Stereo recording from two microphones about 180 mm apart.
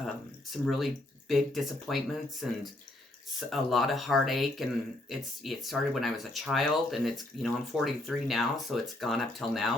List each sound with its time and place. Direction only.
0.5 s speech: centre (ahead or behind)